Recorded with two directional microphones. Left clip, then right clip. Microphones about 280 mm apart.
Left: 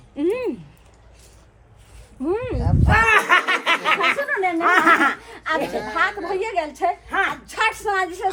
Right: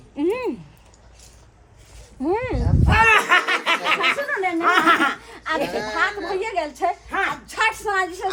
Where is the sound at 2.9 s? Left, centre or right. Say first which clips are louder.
Even; centre.